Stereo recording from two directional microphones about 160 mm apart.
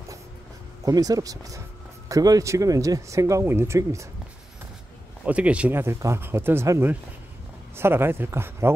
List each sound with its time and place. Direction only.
0.8 s speech: 20° right (ahead or behind)
5.2 s speech: 10° right (ahead or behind)